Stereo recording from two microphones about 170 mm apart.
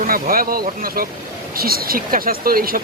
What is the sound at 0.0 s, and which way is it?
Speech, 60° right (ahead or behind).